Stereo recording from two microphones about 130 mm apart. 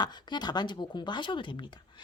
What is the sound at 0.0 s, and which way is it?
Speech, 35° left (ahead or behind).